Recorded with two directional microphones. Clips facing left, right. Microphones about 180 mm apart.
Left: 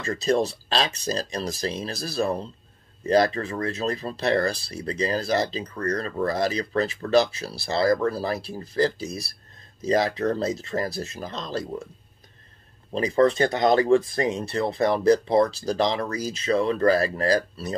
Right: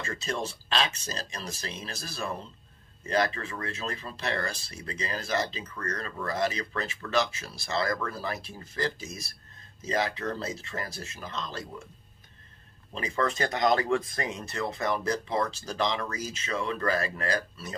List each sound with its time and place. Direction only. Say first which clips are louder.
0.0 s speech: left 10 dB; 35° left (ahead or behind)
12.9 s speech: left 10 dB; 35° left (ahead or behind)